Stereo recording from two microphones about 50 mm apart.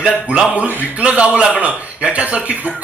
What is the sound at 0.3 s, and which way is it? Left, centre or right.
A man's voice, right.